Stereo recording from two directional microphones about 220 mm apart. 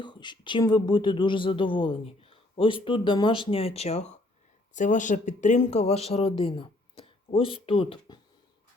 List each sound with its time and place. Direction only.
0.0 s speech: 20° left (ahead or behind)